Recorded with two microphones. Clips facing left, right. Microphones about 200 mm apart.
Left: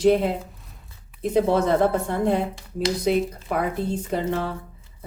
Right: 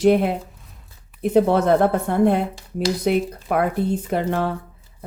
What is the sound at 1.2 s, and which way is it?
Speech, 60° right (ahead or behind).